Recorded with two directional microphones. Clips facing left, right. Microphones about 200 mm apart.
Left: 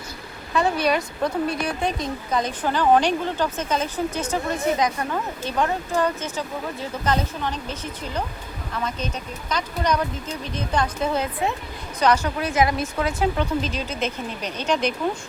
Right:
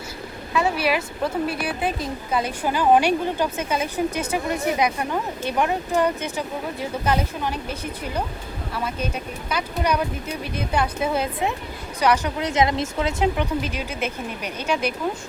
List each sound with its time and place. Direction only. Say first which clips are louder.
0.5 s a woman's voice: left 1 dB; 5° right (ahead or behind)